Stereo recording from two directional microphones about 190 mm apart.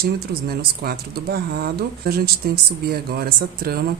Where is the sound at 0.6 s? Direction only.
55° right (ahead or behind).